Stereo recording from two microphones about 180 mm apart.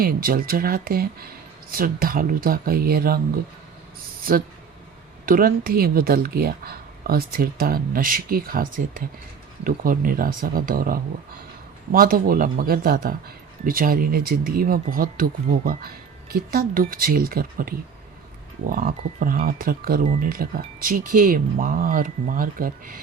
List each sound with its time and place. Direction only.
0.0 s speech: 55° right (ahead or behind)
5.2 s speech: 55° right (ahead or behind)